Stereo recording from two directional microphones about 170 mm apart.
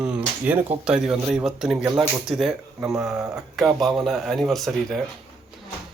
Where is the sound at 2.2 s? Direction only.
Centre (ahead or behind).